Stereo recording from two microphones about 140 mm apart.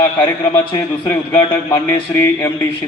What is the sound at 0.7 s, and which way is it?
Speech, 20° left (ahead or behind).